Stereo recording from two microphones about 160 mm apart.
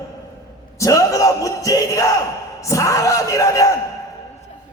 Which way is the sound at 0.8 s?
20° left (ahead or behind).